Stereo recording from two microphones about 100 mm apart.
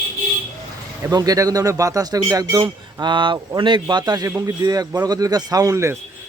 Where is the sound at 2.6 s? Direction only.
50° right (ahead or behind); by 5.9 s 30° right (ahead or behind).